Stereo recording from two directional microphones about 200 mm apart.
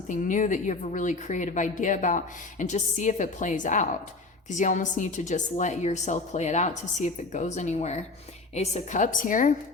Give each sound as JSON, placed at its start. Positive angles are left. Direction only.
{"t": 0.1, "sound": "a woman's voice", "side_deg": 40}